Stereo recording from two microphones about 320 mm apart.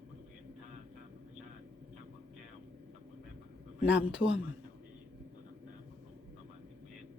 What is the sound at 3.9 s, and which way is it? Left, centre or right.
Speech, left.